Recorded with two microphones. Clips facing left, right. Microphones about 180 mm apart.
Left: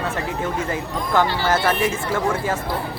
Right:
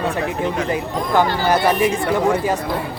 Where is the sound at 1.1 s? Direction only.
15° right (ahead or behind).